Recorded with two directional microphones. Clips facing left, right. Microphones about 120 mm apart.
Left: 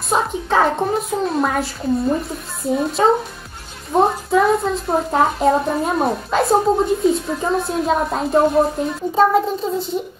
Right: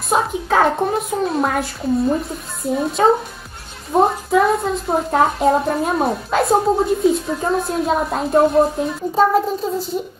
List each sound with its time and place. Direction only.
0.1 s a woman's voice: centre (ahead or behind)